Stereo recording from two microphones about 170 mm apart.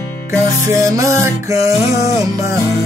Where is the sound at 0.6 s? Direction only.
20° right (ahead or behind).